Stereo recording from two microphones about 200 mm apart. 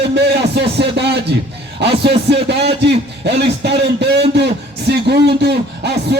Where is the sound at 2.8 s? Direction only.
60° right (ahead or behind).